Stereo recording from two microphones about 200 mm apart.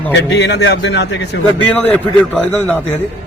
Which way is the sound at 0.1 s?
60° left (ahead or behind).